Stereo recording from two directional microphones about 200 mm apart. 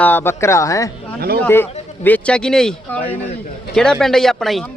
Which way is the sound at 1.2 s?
50° right (ahead or behind).